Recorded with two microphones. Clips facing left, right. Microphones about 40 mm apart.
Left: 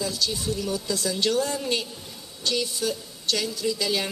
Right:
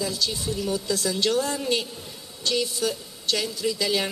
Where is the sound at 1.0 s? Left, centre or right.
Centre.